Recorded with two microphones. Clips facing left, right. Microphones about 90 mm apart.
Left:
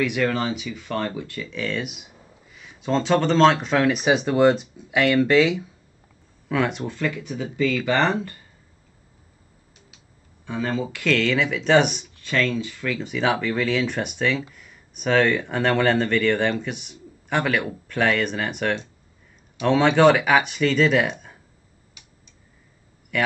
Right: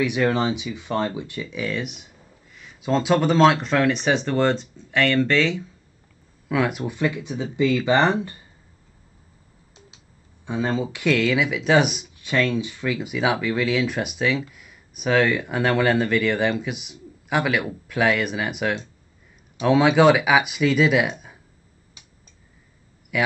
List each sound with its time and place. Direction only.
0.0 s speech: 15° right (ahead or behind)
1.8 s speech: 5° left (ahead or behind)
6.5 s speech: 5° right (ahead or behind)
10.4 s speech: 20° right (ahead or behind)
23.1 s speech: 5° right (ahead or behind)